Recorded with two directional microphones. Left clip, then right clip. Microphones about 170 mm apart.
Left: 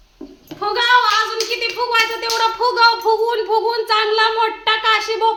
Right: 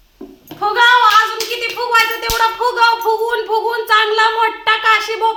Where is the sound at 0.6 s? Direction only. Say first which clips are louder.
Right 4 dB; 5° left (ahead or behind).